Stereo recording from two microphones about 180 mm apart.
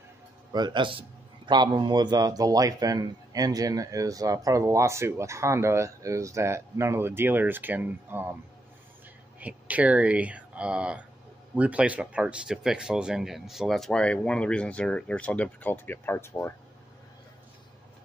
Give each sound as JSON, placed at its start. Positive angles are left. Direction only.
{"t": 0.5, "sound": "a man's voice", "side_deg": -25}
{"t": 9.4, "sound": "a man's voice", "side_deg": -10}